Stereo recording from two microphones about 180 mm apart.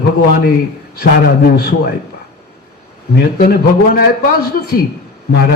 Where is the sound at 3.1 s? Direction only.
60° left (ahead or behind).